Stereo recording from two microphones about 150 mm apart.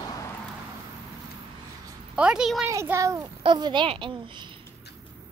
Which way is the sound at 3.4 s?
30° right (ahead or behind).